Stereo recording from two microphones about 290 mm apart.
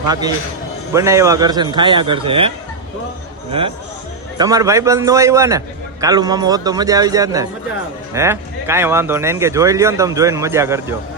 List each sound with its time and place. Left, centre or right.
0.1 s a man's voice: centre
3.5 s a man's voice: centre